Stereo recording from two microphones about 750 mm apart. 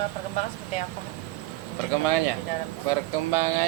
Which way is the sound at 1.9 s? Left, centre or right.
Right.